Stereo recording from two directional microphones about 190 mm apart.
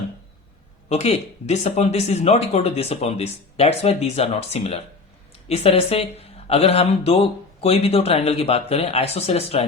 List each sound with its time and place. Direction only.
0.9 s speech: 35° left (ahead or behind)